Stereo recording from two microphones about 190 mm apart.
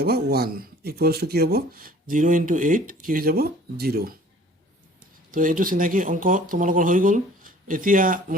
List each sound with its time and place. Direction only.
0.0 s speech: 55° right (ahead or behind)
5.3 s speech: 45° right (ahead or behind)